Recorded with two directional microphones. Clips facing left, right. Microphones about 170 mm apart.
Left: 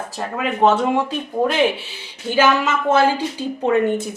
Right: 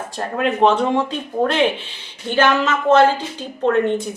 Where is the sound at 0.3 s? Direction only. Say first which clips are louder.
Right 1 dB; centre (ahead or behind).